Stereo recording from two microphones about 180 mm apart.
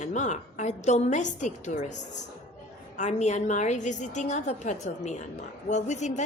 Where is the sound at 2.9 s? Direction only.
40° left (ahead or behind).